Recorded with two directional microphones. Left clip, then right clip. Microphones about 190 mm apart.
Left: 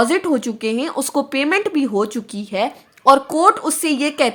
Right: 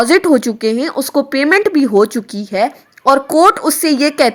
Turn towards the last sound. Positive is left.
turn(degrees=-25)  # may be behind; listen again after turning